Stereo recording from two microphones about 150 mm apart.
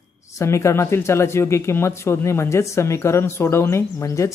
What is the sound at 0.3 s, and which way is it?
Speech, 20° left (ahead or behind).